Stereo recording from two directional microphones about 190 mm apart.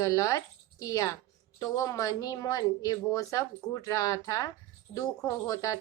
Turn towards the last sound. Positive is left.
turn(degrees=20)  # may be behind; listen again after turning